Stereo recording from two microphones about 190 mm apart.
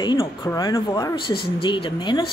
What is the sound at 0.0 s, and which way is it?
Speech, 25° left (ahead or behind).